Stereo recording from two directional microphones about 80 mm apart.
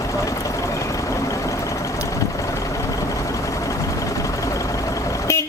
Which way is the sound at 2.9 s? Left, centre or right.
Left.